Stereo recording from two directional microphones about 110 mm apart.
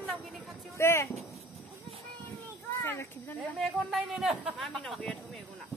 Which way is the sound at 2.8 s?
20° left (ahead or behind).